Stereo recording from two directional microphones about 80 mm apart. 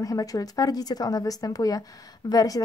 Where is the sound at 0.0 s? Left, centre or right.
Left.